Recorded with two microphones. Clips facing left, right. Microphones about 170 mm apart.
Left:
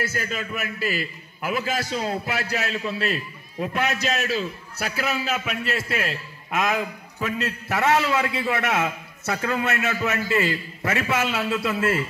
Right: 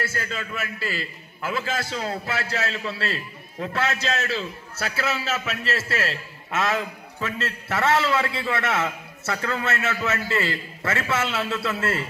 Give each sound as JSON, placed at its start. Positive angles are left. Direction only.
{"t": 0.0, "sound": "a man's voice", "side_deg": 20}